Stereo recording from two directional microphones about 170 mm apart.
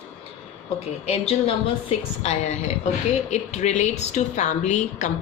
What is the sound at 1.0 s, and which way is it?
A woman's voice, 35° left (ahead or behind).